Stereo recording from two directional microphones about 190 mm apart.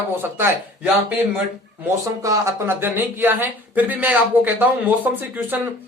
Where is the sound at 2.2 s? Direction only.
15° right (ahead or behind).